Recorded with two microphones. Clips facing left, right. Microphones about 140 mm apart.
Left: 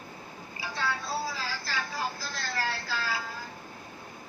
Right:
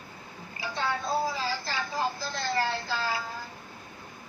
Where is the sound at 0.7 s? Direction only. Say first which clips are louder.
Right 3 dB; 20° right (ahead or behind).